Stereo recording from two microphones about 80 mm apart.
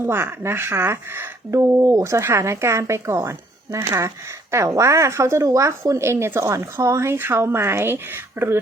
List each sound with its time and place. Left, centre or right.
0.0 s speech: right
1.8 s speech: right